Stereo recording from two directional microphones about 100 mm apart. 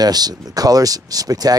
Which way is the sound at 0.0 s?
40° right (ahead or behind).